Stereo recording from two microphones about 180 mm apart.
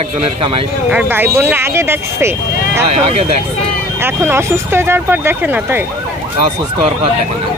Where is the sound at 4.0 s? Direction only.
15° right (ahead or behind).